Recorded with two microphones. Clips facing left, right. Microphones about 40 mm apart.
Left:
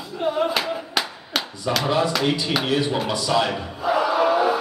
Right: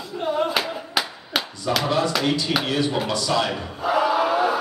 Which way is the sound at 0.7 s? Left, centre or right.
Centre.